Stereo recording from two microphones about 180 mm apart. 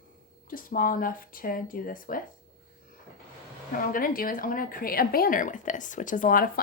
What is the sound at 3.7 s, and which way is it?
A woman's voice, 50° left (ahead or behind).